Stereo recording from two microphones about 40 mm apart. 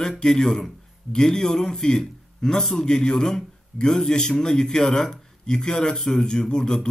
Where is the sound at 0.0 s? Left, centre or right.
Centre.